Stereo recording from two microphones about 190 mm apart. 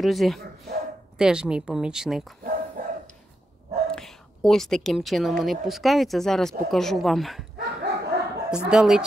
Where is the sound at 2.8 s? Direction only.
45° right (ahead or behind).